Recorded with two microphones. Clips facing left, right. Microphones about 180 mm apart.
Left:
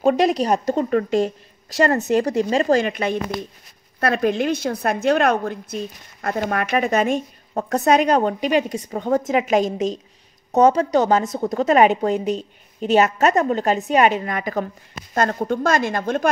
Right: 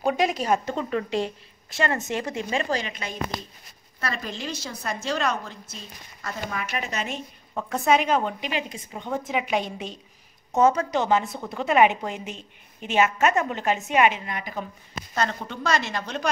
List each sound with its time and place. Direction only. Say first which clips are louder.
0.0 s a woman's voice: left 7 dB; 35° left (ahead or behind)
2.8 s a woman's voice: left 10 dB; 60° left (ahead or behind)